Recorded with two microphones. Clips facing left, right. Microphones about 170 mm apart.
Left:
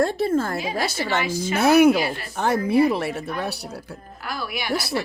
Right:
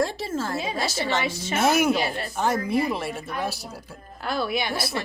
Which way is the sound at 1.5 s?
65° left (ahead or behind).